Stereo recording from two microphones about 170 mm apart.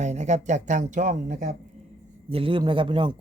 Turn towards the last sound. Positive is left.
turn(degrees=-30)  # may be behind; listen again after turning